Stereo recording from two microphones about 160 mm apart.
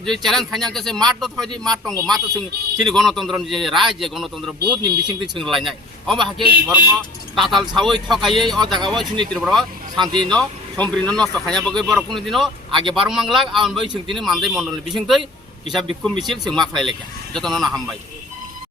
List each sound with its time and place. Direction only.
0.0 s speech: 5° left (ahead or behind)
4.6 s speech: 25° right (ahead or behind)
5.4 s speech: centre (ahead or behind)
7.3 s speech: centre (ahead or behind)